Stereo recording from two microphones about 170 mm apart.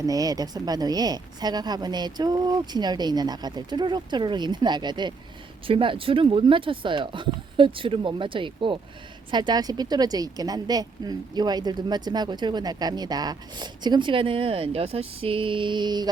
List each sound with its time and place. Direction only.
0.0 s a woman's voice: 20° right (ahead or behind)